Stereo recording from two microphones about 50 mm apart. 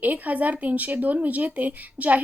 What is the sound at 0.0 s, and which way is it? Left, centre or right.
Speech, right.